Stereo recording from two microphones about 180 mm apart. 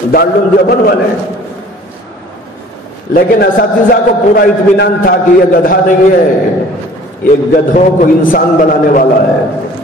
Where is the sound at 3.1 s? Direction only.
55° left (ahead or behind).